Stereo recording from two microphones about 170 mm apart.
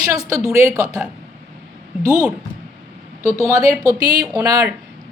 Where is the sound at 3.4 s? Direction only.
20° right (ahead or behind).